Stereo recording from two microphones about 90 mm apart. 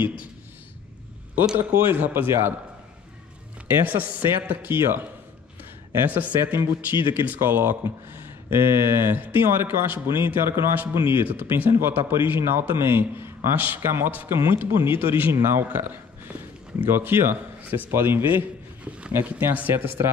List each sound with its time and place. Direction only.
1.7 s speech: 20° right (ahead or behind)
3.6 s speech: 20° right (ahead or behind)
6.0 s speech: 20° right (ahead or behind)